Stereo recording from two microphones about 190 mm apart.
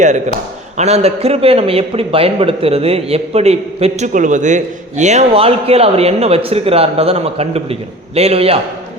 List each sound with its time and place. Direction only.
0.8 s a man's voice: 35° right (ahead or behind)